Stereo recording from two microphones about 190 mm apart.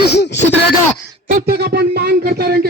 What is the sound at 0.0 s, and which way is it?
Speech, 60° left (ahead or behind).